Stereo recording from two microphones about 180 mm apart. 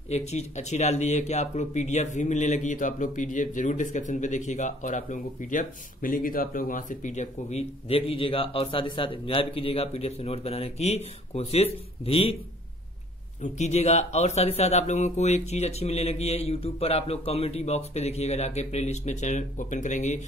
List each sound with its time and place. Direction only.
0.1 s speech: 35° left (ahead or behind)
13.4 s speech: 40° left (ahead or behind)